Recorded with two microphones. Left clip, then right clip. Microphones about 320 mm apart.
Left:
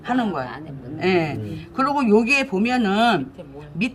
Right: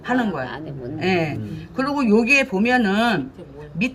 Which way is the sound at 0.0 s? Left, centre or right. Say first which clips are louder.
Right 1 dB; centre.